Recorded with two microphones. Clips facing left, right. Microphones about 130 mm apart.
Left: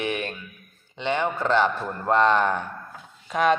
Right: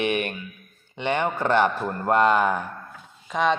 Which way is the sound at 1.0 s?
15° right (ahead or behind).